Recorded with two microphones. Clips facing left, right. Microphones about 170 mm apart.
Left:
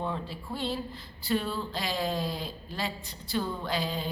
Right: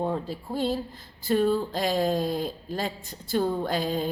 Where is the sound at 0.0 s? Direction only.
45° right (ahead or behind).